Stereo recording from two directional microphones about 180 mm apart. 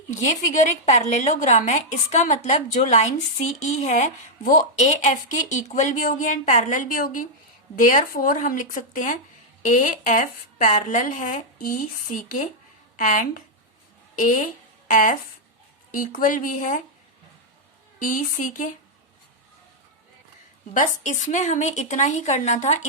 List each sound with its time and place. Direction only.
0.1 s a woman's voice: 40° left (ahead or behind)
18.0 s a woman's voice: 45° left (ahead or behind)
20.7 s a woman's voice: 45° left (ahead or behind)